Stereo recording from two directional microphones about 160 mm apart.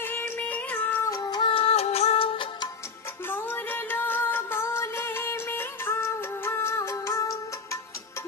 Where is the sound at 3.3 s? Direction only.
15° left (ahead or behind).